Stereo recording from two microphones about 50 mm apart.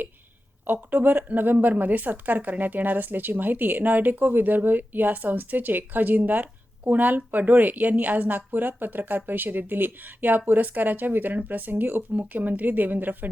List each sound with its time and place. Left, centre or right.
0.7 s speech: right